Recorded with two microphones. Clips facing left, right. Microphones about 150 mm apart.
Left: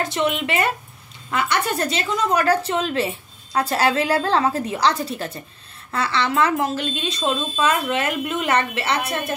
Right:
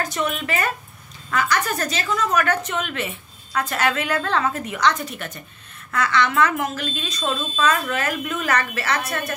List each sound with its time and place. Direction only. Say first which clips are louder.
0.0 s a woman's voice: left 3 dB; 25° left (ahead or behind)